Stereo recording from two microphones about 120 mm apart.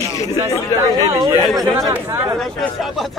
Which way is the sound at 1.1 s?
25° right (ahead or behind).